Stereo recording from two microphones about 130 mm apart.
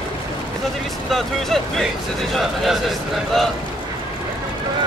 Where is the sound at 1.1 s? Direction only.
Centre (ahead or behind).